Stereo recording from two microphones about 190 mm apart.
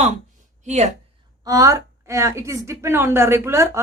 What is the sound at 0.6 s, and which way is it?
Speech, 35° right (ahead or behind).